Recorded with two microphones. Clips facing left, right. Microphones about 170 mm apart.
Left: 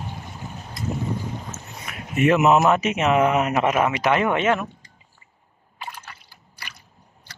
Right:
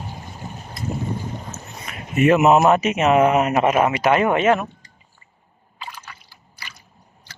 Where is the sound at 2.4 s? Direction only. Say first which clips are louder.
Right 3 dB; 35° right (ahead or behind).